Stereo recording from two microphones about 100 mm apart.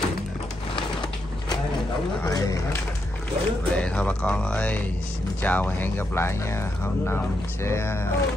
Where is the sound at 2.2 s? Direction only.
40° left (ahead or behind).